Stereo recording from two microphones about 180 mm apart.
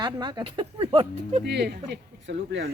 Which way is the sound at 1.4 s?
65° right (ahead or behind).